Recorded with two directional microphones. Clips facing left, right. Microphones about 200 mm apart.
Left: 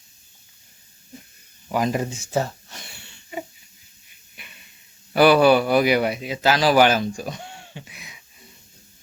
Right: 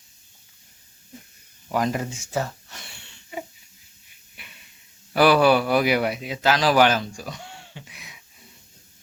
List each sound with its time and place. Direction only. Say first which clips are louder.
1.9 s speech: left 3 dB; 25° left (ahead or behind)
3.0 s wheeze: left 2 dB; centre (ahead or behind)
4.4 s hiss: left 1 dB; centre (ahead or behind)
5.1 s a man's voice: left 2 dB; centre (ahead or behind)
7.2 s a sound: left 4 dB; 20° left (ahead or behind)
7.9 s a sound: left 2 dB; centre (ahead or behind)